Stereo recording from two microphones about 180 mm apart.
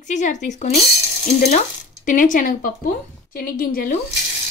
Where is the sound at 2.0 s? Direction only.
45° left (ahead or behind).